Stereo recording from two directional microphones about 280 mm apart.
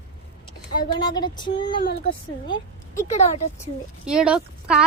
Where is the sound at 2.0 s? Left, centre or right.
Centre.